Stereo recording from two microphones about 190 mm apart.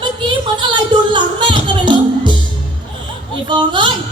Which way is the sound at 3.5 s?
25° right (ahead or behind).